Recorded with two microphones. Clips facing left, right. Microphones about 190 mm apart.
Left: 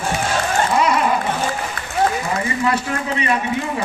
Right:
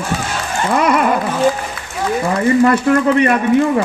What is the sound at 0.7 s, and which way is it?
Dog, 55° right (ahead or behind).